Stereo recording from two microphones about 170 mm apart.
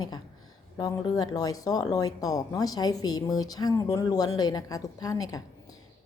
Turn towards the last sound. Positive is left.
turn(degrees=20)  # may be behind; listen again after turning